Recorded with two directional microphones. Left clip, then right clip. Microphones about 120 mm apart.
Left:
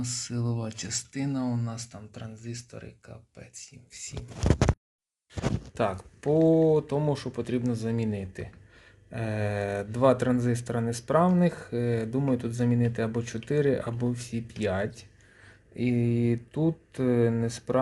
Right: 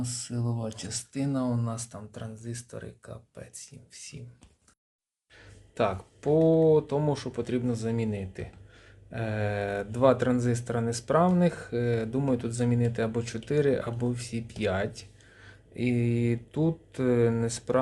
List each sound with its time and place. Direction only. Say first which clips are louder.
0.0 s speech: left 2 dB; 20° left (ahead or behind)
1.3 s speech: right 3 dB; 20° right (ahead or behind); by 3.7 s 40° right (ahead or behind)
3.9 s speech: left 7 dB; 10° right (ahead or behind)
5.7 s speech: right 3 dB; 5° right (ahead or behind)